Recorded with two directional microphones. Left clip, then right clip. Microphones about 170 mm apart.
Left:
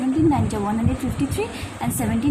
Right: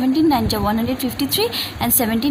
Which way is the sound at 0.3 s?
50° right (ahead or behind).